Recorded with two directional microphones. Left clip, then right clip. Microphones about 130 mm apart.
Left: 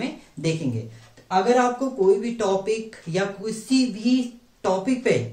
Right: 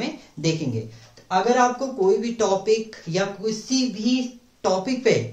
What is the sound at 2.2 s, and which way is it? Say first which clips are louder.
Speech: right 1 dB; 30° right (ahead or behind).